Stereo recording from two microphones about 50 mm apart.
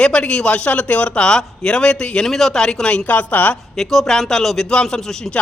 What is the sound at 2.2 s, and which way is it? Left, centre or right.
Speech, centre.